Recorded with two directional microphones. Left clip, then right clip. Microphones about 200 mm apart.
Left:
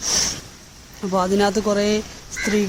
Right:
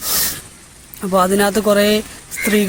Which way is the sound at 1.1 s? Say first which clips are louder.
Right 5 dB; 10° right (ahead or behind).